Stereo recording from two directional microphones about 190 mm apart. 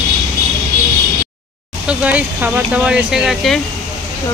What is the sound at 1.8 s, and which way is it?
Speech, 5° right (ahead or behind).